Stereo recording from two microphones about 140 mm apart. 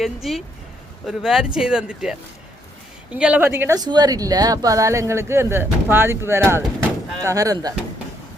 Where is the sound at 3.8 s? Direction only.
30° right (ahead or behind).